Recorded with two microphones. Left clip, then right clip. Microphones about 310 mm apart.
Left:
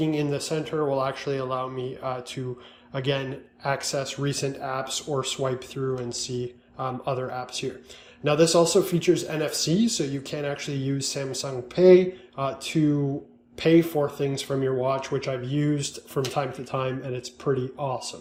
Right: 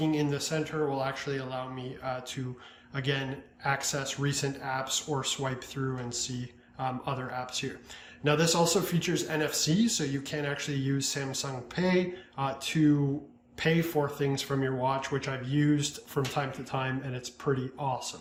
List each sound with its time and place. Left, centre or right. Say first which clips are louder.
0.0 s speech: left 3 dB; centre